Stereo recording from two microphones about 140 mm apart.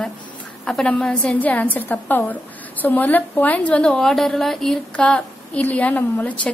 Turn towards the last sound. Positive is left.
turn(degrees=10)  # may be behind; listen again after turning